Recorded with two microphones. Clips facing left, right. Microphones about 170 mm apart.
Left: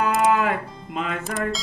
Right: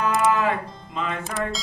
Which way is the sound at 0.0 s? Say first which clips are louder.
Left 1 dB; 50° left (ahead or behind).